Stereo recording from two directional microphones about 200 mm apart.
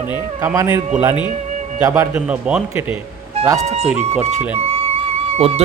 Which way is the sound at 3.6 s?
30° right (ahead or behind).